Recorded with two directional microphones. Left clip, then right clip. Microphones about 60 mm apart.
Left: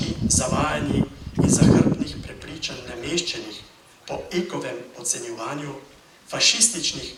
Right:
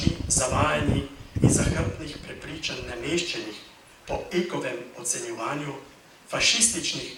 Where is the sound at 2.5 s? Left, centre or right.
Left.